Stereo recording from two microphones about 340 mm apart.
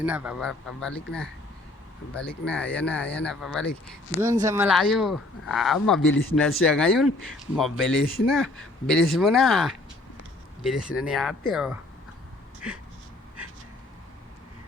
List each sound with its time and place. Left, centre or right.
0.0 s speech: centre
4.2 s speech: centre
6.1 s speech: left
6.6 s speech: centre